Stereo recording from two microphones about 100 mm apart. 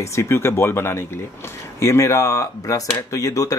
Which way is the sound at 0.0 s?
30° left (ahead or behind).